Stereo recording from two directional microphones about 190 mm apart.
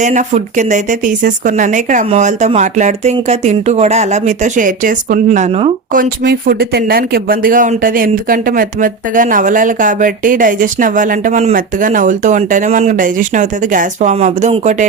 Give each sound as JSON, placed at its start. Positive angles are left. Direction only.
{"t": 0.0, "sound": "speech", "side_deg": -40}
{"t": 6.2, "sound": "speech", "side_deg": -55}